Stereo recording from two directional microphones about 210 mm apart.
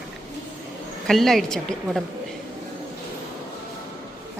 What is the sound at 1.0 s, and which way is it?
Speech, centre (ahead or behind).